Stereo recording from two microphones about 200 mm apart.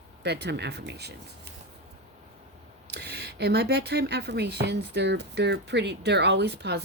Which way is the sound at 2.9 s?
55° right (ahead or behind).